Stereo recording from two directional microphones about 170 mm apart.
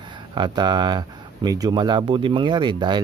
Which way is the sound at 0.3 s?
25° right (ahead or behind).